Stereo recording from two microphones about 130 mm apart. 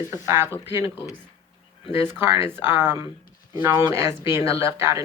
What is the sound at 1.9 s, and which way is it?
Speech, 15° right (ahead or behind).